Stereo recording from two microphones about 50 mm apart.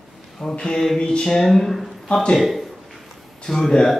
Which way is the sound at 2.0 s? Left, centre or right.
Centre.